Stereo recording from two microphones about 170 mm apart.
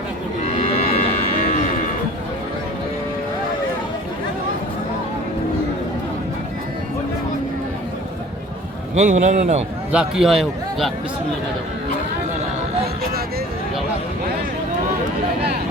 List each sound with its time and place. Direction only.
0.4 s cattle: 40° left (ahead or behind)
9.0 s a man's voice: 45° right (ahead or behind)
9.9 s a man's voice: 5° right (ahead or behind)